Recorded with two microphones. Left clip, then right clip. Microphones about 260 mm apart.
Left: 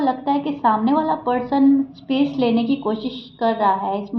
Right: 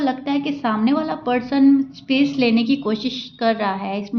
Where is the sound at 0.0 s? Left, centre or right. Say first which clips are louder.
Left 2 dB; right.